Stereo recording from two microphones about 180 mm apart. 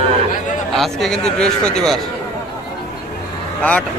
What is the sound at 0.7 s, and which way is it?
A man's voice, centre (ahead or behind).